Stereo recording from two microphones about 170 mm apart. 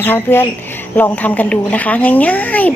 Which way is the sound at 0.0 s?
10° left (ahead or behind).